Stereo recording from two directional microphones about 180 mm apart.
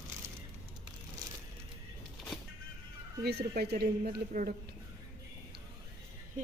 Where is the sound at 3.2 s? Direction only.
60° right (ahead or behind).